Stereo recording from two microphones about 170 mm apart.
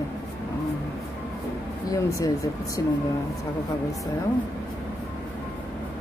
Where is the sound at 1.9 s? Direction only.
20° left (ahead or behind).